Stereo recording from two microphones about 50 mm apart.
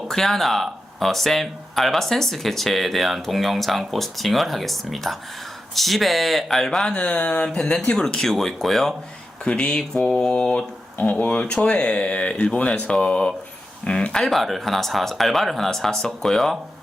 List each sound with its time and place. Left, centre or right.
0.1 s speech: centre
6.9 s speech: left
7.9 s mantra: centre
9.4 s mantra: centre
10.9 s speech: left
11.3 s speech: left
14.3 s speech: centre